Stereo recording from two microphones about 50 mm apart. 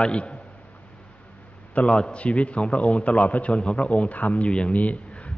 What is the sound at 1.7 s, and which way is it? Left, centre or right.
A man's voice, left.